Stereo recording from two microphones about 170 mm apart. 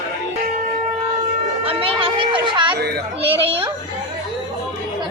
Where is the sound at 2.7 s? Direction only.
70° right (ahead or behind).